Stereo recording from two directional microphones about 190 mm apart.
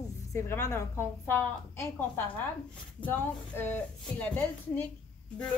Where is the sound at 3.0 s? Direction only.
10° left (ahead or behind).